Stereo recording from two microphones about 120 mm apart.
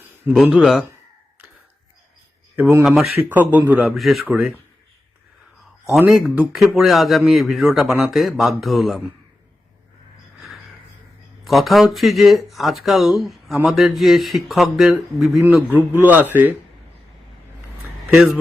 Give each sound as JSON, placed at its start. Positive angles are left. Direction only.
{"t": 0.3, "sound": "speech", "side_deg": -5}
{"t": 2.6, "sound": "speech", "side_deg": -15}
{"t": 2.8, "sound": "speech", "side_deg": 0}
{"t": 3.2, "sound": "speech", "side_deg": -15}
{"t": 3.9, "sound": "speech", "side_deg": 0}
{"t": 6.0, "sound": "speech", "side_deg": -5}
{"t": 11.4, "sound": "speech", "side_deg": 0}
{"t": 15.7, "sound": "speech", "side_deg": -15}
{"t": 18.1, "sound": "speech", "side_deg": -5}